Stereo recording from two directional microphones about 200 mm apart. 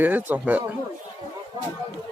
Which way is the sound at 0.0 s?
10° right (ahead or behind).